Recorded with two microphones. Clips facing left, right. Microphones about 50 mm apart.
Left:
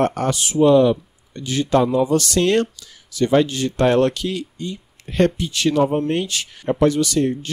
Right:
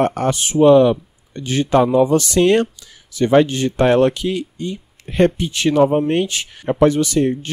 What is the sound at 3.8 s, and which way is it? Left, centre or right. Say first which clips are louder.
Speech: right 2 dB; centre.